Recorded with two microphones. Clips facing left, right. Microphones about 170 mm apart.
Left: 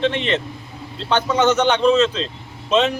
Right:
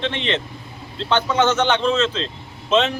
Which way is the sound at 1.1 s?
15° left (ahead or behind).